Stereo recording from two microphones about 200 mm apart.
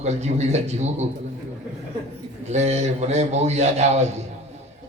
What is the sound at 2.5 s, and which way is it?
A man's voice, 35° right (ahead or behind).